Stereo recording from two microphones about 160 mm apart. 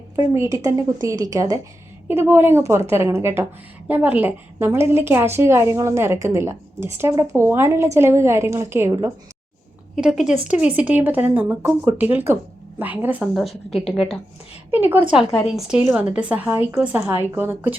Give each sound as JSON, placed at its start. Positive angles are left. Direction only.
{"t": 0.2, "sound": "a woman's voice", "side_deg": -20}
{"t": 9.9, "sound": "a woman's voice", "side_deg": -5}
{"t": 14.7, "sound": "a woman's voice", "side_deg": -10}
{"t": 15.4, "sound": "a woman's voice", "side_deg": 0}